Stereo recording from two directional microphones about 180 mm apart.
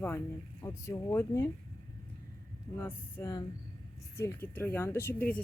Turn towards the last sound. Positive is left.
turn(degrees=10)  # may be behind; listen again after turning